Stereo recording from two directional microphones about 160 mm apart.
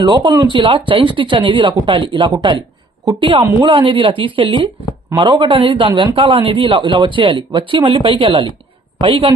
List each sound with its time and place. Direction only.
0.0 s a woman's voice: 30° right (ahead or behind)